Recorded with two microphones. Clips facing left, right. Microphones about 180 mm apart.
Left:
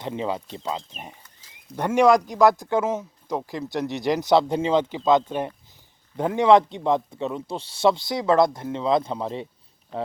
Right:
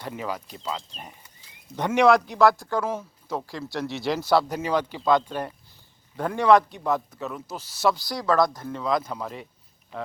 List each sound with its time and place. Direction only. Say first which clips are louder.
0.0 s speech: left 4 dB; 25° left (ahead or behind)
1.7 s speech: left 1 dB; 10° left (ahead or behind); by 9.5 s 30° left (ahead or behind)